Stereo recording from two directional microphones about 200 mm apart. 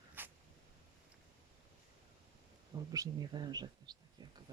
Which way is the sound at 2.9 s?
20° right (ahead or behind).